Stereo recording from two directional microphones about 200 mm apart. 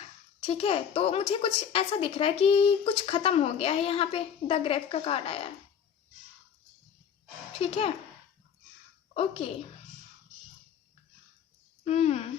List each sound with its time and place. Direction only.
0.3 s a woman's voice: 25° left (ahead or behind)
7.6 s a woman's voice: 30° left (ahead or behind)
9.1 s a woman's voice: 30° left (ahead or behind)
11.9 s speech: 30° left (ahead or behind)